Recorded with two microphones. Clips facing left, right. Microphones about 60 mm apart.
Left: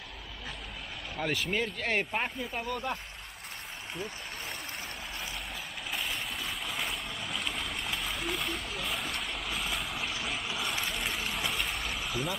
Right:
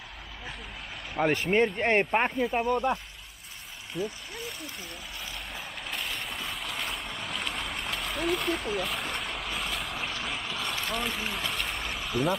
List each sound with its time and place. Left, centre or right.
1.1 s speech: right
5.9 s boat: centre